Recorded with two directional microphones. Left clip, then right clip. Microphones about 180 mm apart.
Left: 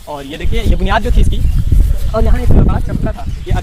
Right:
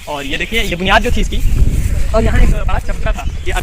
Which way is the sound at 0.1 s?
5° left (ahead or behind).